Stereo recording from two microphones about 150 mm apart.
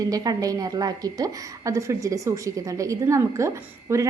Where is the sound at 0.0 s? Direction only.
25° right (ahead or behind).